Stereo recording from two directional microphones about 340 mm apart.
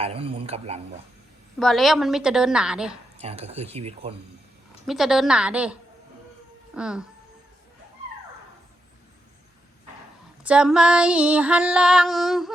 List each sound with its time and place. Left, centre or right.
0.0 s speech: centre
1.5 s female singing: centre
3.2 s speech: centre
4.9 s female singing: centre
6.7 s female singing: centre
10.4 s female singing: centre